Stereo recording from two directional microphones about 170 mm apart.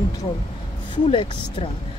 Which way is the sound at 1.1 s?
30° left (ahead or behind).